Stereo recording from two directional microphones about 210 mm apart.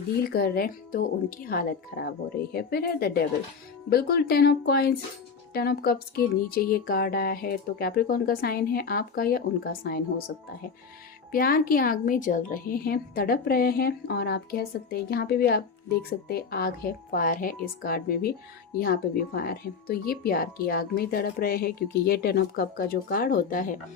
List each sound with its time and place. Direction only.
0.3 s speech: 45° left (ahead or behind)